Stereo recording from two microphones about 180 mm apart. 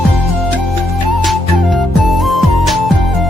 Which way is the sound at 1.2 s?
Centre (ahead or behind).